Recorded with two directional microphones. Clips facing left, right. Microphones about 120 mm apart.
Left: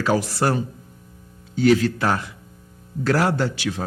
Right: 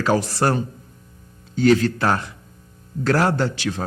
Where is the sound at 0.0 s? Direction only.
40° right (ahead or behind).